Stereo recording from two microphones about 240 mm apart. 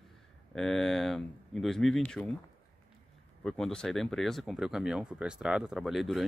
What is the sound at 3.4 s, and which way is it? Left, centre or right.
Speech, centre.